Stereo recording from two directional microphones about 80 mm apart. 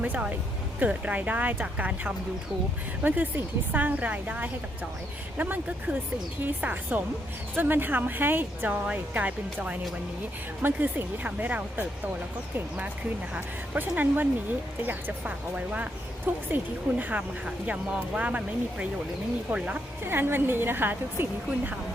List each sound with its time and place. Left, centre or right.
0.0 s speech: centre
20.1 s speech: right